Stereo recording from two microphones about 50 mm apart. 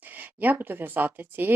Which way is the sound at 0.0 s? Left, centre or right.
Right.